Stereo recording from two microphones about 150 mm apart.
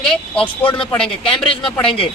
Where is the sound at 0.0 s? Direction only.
5° left (ahead or behind).